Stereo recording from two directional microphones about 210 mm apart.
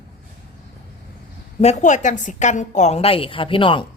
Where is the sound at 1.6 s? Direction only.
35° left (ahead or behind).